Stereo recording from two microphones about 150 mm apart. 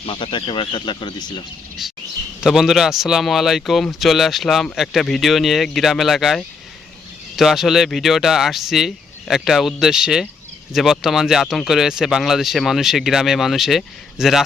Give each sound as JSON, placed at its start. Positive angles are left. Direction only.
{"t": 0.0, "sound": "speech", "side_deg": 35}
{"t": 1.8, "sound": "speech", "side_deg": 0}